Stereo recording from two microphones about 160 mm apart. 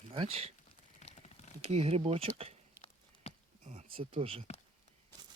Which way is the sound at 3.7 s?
35° right (ahead or behind).